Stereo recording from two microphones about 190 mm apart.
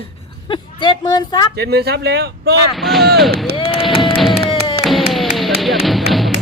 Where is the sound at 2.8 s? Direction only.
Centre (ahead or behind).